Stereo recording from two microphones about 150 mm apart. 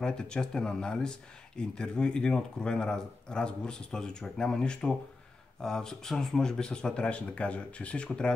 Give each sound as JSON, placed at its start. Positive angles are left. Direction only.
{"t": 0.0, "sound": "speech", "side_deg": 5}